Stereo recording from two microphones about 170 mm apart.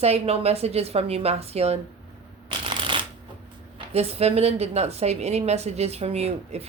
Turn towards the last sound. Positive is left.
turn(degrees=-40)  # may be behind; listen again after turning